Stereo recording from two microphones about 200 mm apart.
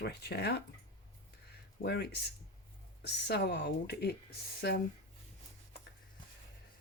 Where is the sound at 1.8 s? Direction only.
55° left (ahead or behind).